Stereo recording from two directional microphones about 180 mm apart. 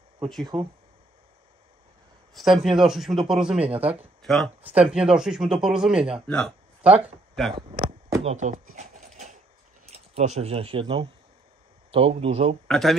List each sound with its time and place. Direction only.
0.5 s speech: 30° right (ahead or behind)
2.3 s a man's voice: centre (ahead or behind)
3.7 s speech: 35° right (ahead or behind)
4.2 s a man's voice: centre (ahead or behind)
8.2 s a sound: 40° right (ahead or behind)
9.8 s speech: 35° right (ahead or behind)
12.6 s speech: 5° left (ahead or behind)